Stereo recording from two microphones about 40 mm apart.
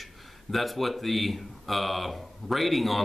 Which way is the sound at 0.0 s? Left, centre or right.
Centre.